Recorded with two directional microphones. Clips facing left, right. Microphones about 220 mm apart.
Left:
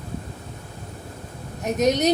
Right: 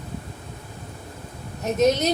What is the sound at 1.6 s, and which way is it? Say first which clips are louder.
Speech: right 1 dB; 15° left (ahead or behind).